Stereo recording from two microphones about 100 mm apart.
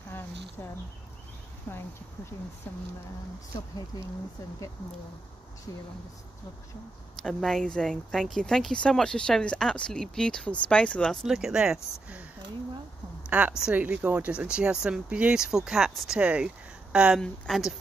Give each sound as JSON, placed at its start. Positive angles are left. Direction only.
{"t": 1.7, "sound": "speech", "side_deg": 25}
{"t": 3.5, "sound": "speech", "side_deg": 35}
{"t": 5.7, "sound": "speech", "side_deg": 35}
{"t": 7.2, "sound": "speech", "side_deg": 5}
{"t": 13.3, "sound": "speech", "side_deg": -10}